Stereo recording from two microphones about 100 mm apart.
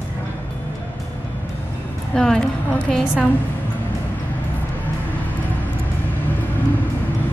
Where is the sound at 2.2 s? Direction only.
5° left (ahead or behind).